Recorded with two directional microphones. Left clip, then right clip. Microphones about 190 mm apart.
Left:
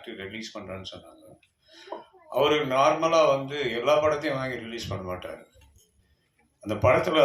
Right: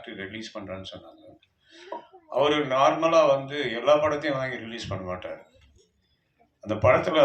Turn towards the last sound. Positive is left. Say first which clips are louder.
# right 1 dB
turn(degrees=50)  # may be behind; listen again after turning